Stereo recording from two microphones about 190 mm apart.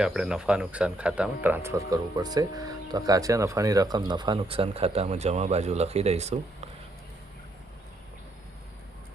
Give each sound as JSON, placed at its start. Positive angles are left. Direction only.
{"t": 0.0, "sound": "speech", "side_deg": -5}